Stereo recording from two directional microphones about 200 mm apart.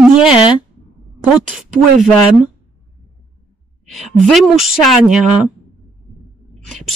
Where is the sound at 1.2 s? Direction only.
Centre (ahead or behind).